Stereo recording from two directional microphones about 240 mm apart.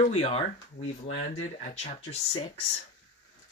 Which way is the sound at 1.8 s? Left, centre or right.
Left.